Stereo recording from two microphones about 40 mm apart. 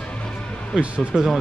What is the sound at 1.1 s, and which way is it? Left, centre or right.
Speech, centre.